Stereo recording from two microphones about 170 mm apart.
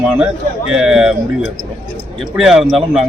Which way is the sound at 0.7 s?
5° right (ahead or behind).